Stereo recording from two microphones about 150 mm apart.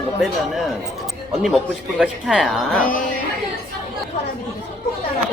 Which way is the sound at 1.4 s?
Centre (ahead or behind).